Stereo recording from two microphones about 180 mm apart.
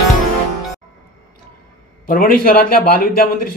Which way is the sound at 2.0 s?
50° left (ahead or behind).